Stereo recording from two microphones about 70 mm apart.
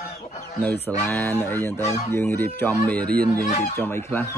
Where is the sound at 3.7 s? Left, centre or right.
Left.